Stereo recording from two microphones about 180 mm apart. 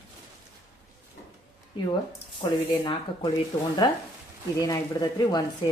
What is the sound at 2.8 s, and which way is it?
Speech, 30° left (ahead or behind).